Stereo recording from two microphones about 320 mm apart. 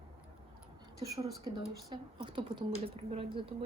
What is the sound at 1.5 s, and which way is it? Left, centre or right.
Speech, centre.